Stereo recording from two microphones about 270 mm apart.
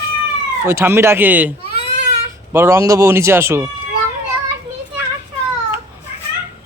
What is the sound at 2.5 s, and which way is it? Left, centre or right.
Speech, centre.